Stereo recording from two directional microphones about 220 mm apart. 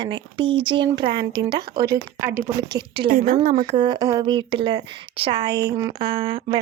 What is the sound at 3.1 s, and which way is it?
Speech, 40° right (ahead or behind).